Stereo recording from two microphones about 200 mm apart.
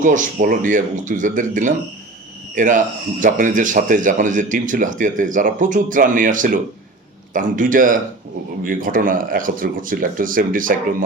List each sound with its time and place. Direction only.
0.0 s speech: 40° right (ahead or behind)